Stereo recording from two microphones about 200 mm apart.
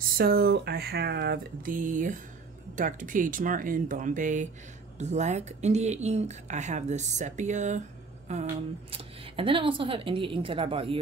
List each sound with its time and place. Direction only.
0.2 s speech: 50° right (ahead or behind); by 11.0 s 25° right (ahead or behind)